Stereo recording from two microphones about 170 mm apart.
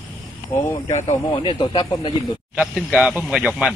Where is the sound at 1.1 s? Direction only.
30° left (ahead or behind).